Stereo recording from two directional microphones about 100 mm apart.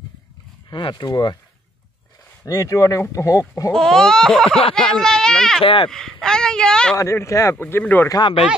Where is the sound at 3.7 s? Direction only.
5° left (ahead or behind).